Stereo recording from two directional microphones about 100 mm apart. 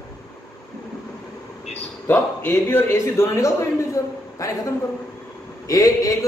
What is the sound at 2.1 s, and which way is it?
A man's voice, 20° left (ahead or behind).